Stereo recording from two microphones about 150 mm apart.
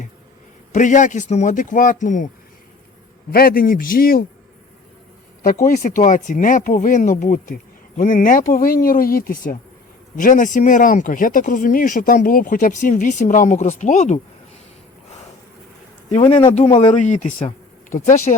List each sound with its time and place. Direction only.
0.7 s speech: 55° left (ahead or behind)
3.3 s a man's voice: 80° left
5.6 s a man's voice: 70° left (ahead or behind)
6.0 s speech: 55° left (ahead or behind)
16.1 s speech: 45° left (ahead or behind)